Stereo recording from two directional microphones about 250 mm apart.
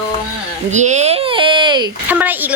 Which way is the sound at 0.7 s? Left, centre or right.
Right.